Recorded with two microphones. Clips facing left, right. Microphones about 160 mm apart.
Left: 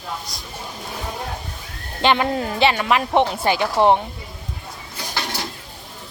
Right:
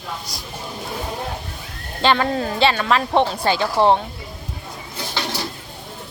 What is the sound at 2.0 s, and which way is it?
Speech, 15° left (ahead or behind).